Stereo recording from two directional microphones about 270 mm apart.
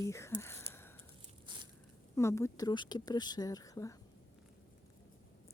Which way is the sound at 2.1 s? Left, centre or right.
Centre.